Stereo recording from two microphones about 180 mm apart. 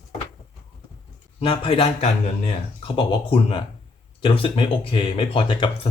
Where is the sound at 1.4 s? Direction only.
30° left (ahead or behind).